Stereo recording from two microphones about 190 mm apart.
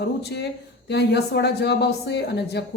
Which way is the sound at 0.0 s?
60° left (ahead or behind).